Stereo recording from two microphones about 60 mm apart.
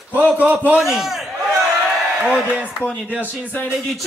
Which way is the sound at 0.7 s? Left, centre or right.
Centre.